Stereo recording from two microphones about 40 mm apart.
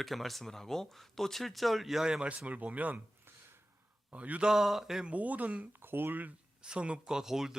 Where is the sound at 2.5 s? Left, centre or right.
Right.